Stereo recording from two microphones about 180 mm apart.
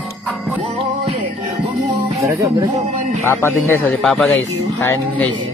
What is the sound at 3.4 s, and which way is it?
Speech, 15° left (ahead or behind).